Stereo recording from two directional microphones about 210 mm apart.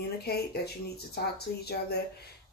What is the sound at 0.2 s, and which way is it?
Speech, 50° left (ahead or behind).